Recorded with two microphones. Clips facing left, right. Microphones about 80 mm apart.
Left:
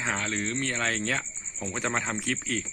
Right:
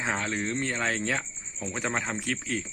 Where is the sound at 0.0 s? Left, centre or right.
Centre.